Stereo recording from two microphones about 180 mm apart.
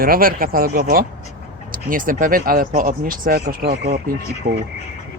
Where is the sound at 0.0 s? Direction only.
55° right (ahead or behind).